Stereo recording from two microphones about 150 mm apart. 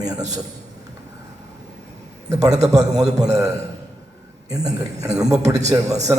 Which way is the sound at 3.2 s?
25° right (ahead or behind).